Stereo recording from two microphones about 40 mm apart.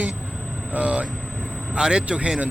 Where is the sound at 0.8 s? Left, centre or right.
Right.